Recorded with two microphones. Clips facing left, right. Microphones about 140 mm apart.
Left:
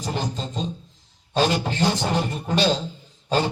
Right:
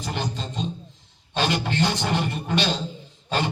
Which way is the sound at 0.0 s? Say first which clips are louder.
Left 2 dB; 35° left (ahead or behind).